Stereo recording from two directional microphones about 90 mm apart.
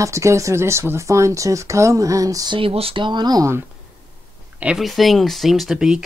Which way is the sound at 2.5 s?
85° right.